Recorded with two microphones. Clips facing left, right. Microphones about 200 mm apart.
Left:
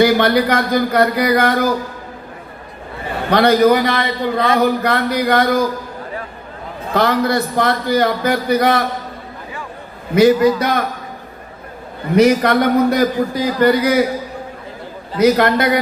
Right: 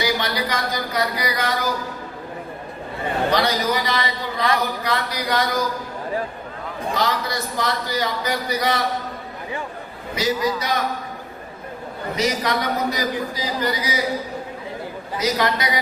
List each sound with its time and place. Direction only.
0.0 s a man's voice: 55° left (ahead or behind)
3.2 s a man's voice: 55° left (ahead or behind)
6.9 s a man's voice: 60° left (ahead or behind)
10.2 s a man's voice: 55° left (ahead or behind)
12.1 s a man's voice: 60° left (ahead or behind)
15.2 s a man's voice: 55° left (ahead or behind)